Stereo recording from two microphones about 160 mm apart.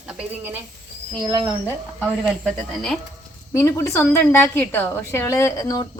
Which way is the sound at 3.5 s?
15° left (ahead or behind).